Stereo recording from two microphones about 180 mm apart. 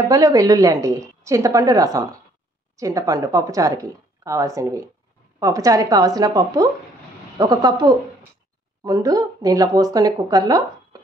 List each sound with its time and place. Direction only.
0.1 s a woman's voice: 20° right (ahead or behind)